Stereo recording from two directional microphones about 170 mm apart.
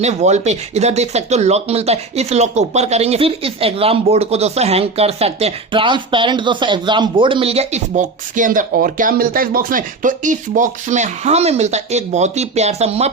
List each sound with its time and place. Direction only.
0.0 s speech: 40° right (ahead or behind)